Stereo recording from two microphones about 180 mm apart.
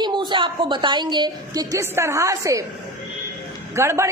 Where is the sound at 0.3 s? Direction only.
25° right (ahead or behind).